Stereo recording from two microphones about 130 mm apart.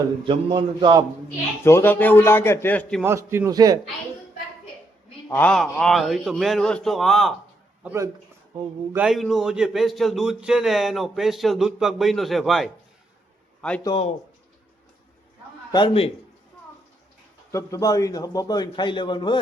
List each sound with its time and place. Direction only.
0.3 s a man's voice: 35° right (ahead or behind)
1.6 s a man's voice: 20° left (ahead or behind)
3.0 s a man's voice: 20° right (ahead or behind)
5.3 s speech: 10° left (ahead or behind)
9.0 s a man's voice: centre (ahead or behind)
15.7 s a man's voice: 35° left (ahead or behind)
17.5 s a man's voice: 25° left (ahead or behind)